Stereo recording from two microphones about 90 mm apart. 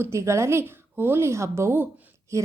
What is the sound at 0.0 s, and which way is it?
A woman's voice, 30° right (ahead or behind).